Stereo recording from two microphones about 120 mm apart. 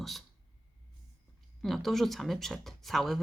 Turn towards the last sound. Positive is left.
turn(degrees=0)  # may be behind; listen again after turning